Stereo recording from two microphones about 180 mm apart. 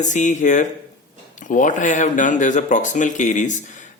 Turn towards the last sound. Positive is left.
turn(degrees=45)  # may be behind; listen again after turning